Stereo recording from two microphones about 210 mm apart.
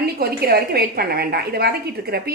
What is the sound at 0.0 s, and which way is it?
A woman's voice, 45° right (ahead or behind).